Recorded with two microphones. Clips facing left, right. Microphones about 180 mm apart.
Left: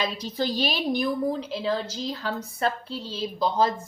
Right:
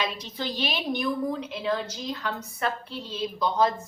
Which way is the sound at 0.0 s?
35° left (ahead or behind).